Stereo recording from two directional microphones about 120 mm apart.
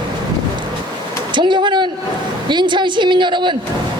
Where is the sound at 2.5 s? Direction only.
40° right (ahead or behind).